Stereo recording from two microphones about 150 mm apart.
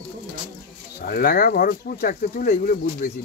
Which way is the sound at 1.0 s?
85° left.